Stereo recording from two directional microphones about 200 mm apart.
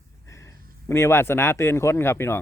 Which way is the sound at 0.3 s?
15° left (ahead or behind).